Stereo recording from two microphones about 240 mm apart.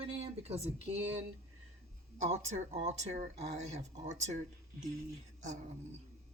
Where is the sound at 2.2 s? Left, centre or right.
Right.